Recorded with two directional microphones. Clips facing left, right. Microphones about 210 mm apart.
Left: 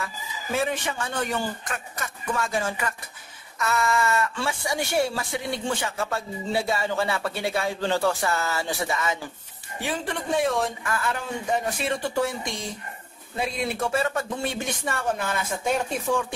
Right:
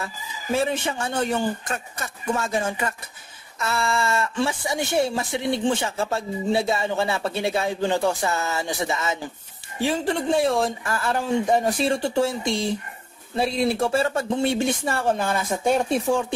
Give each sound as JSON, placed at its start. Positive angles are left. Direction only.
{"t": 0.0, "sound": "speech", "side_deg": -30}